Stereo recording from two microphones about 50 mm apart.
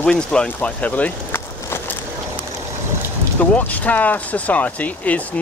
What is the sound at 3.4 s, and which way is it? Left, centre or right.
Speech, left.